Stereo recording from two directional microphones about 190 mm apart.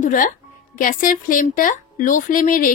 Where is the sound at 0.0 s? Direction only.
45° left (ahead or behind).